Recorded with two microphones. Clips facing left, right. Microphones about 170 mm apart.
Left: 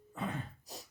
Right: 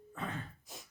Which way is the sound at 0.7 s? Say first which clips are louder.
Left 3 dB; 35° left (ahead or behind).